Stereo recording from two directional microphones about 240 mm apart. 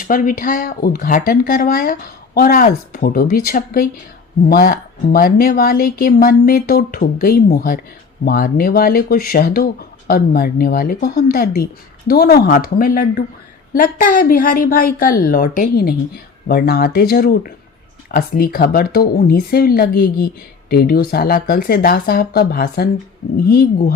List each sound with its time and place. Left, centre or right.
0.0 s speech: left